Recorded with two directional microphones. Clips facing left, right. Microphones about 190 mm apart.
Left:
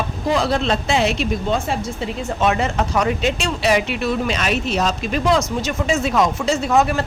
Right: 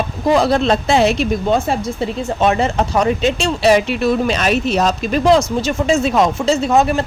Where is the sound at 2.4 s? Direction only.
30° right (ahead or behind).